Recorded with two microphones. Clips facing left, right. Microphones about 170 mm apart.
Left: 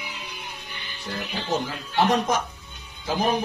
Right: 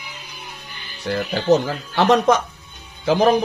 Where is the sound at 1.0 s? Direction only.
75° right (ahead or behind).